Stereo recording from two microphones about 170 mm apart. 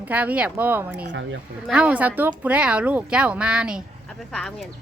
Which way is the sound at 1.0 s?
90° right.